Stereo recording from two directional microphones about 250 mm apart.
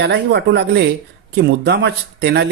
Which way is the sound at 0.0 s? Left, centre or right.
Right.